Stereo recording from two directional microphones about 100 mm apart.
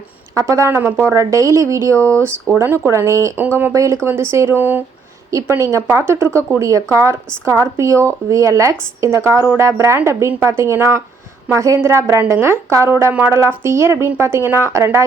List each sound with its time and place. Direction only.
0.3 s speech: 35° right (ahead or behind)